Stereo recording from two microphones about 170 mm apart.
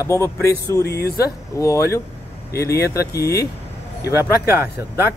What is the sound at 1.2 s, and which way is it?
Speech, 20° left (ahead or behind).